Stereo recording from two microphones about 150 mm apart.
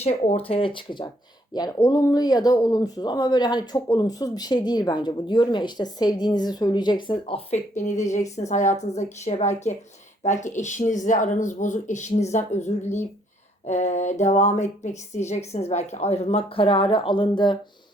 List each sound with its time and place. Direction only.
0.0 s speech: 45° left (ahead or behind)
7.8 s a woman's voice: 50° left (ahead or behind); by 17.6 s 30° left (ahead or behind)